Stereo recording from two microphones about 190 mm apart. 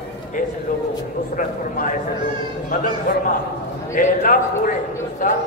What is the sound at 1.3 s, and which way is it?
Speech, 45° left (ahead or behind).